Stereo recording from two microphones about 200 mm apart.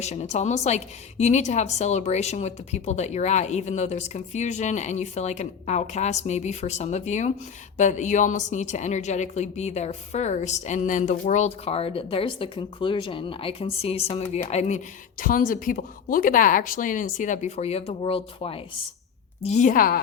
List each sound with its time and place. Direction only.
0.0 s a woman's voice: 35° left (ahead or behind)